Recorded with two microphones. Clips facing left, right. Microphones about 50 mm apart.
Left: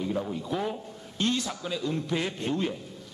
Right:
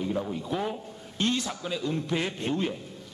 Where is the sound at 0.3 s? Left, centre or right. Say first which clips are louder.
Even; centre.